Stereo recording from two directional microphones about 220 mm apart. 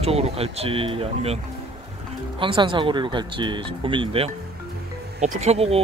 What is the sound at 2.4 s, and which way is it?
Speech, 20° right (ahead or behind).